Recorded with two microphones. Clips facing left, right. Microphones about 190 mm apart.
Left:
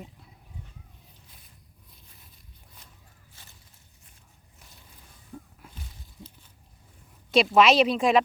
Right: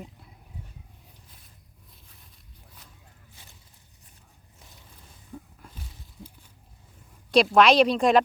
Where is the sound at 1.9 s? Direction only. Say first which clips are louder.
Right 1 dB; centre (ahead or behind).